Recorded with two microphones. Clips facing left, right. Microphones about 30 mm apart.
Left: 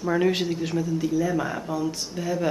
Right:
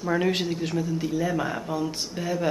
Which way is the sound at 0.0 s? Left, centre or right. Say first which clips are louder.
Left 2 dB; centre.